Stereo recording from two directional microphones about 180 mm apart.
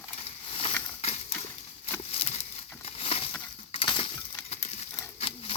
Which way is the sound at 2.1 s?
35° left (ahead or behind).